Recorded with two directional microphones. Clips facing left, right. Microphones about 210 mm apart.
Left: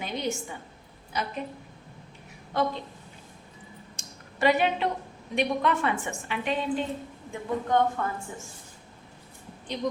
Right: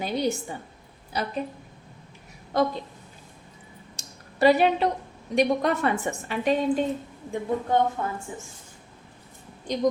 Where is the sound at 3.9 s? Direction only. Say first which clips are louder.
Even; 35° right (ahead or behind).